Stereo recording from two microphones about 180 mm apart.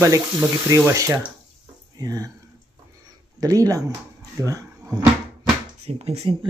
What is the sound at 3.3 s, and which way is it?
Speech, 20° right (ahead or behind).